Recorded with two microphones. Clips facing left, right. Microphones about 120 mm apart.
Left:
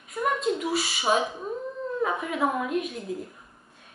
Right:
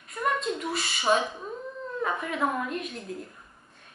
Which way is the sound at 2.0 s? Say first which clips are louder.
Left 2 dB; 5° left (ahead or behind).